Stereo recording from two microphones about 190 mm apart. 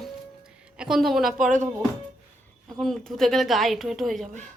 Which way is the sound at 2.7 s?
Centre (ahead or behind).